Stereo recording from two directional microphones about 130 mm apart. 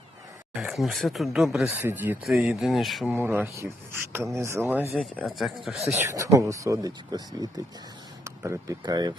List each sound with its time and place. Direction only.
0.5 s speech: centre (ahead or behind)
3.1 s speech: 15° right (ahead or behind)
4.9 s speech: 5° left (ahead or behind)
6.0 s speech: 20° right (ahead or behind)
8.2 s speech: 25° right (ahead or behind)